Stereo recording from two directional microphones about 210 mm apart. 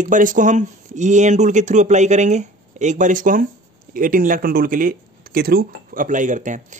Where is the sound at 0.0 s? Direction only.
40° right (ahead or behind).